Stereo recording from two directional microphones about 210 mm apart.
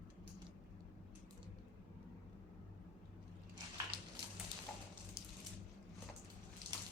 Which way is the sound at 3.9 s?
25° right (ahead or behind).